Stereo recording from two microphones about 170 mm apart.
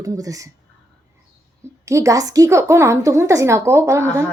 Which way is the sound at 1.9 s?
20° right (ahead or behind).